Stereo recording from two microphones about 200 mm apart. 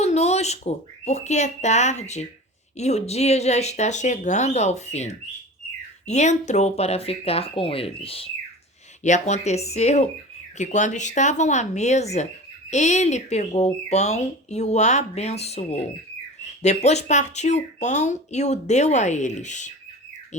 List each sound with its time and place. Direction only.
0.0 s speech: 30° left (ahead or behind)